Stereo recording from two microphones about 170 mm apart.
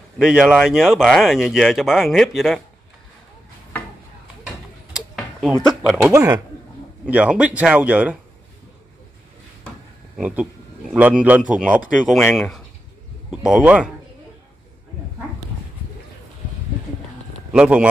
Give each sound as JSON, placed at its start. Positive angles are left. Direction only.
{"t": 0.2, "sound": "speech", "side_deg": -5}
{"t": 4.9, "sound": "a sound", "side_deg": -5}
{"t": 6.1, "sound": "a man's voice", "side_deg": -20}
{"t": 7.1, "sound": "a man's voice", "side_deg": -5}
{"t": 10.1, "sound": "a man's voice", "side_deg": -5}
{"t": 17.5, "sound": "speech", "side_deg": -5}